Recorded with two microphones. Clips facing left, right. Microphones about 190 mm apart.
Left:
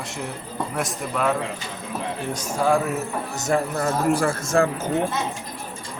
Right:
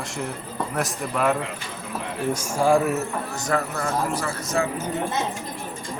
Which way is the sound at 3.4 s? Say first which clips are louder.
Left 4 dB; 25° left (ahead or behind).